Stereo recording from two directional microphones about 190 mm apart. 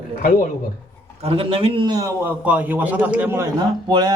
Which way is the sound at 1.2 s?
30° right (ahead or behind).